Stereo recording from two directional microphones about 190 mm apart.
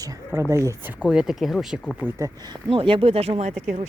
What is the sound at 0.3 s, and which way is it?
Speech, 15° right (ahead or behind).